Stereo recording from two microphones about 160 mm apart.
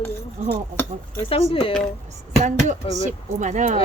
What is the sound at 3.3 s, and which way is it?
Speech, 50° right (ahead or behind).